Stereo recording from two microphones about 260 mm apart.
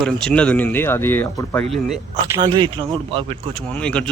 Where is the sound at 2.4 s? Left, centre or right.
Centre.